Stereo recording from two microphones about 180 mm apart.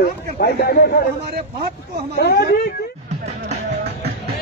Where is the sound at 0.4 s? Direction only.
55° left (ahead or behind).